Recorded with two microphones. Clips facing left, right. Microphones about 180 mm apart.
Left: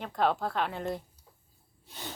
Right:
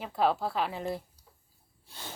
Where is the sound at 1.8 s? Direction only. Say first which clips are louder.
Left 3 dB; 20° left (ahead or behind).